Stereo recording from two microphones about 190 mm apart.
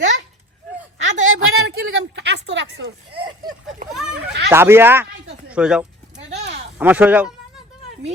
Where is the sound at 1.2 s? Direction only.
80° right.